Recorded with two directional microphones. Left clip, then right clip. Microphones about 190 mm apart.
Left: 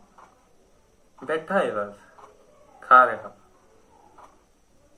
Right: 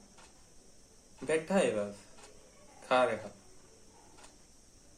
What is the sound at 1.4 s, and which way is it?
Speech, 15° right (ahead or behind).